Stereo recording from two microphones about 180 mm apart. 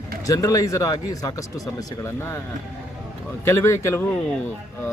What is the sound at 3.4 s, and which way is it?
Speech, 15° left (ahead or behind).